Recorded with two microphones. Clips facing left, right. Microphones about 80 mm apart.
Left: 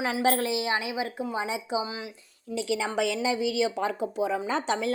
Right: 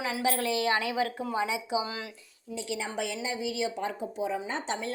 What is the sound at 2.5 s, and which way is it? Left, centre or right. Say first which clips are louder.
Speech: left 6 dB; left.